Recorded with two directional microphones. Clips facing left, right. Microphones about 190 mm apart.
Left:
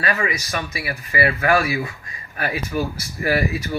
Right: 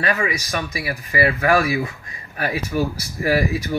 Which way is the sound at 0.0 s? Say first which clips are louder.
Right 1 dB; 15° right (ahead or behind).